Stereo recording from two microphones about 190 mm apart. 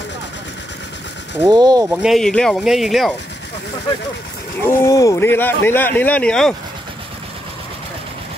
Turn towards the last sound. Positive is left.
turn(degrees=5)  # may be behind; listen again after turning